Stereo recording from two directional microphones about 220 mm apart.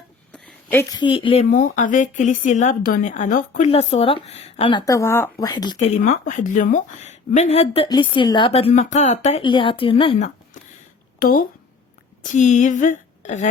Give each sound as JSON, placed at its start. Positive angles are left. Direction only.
{"t": 0.3, "sound": "speech", "side_deg": 5}
{"t": 5.8, "sound": "a woman's voice", "side_deg": 35}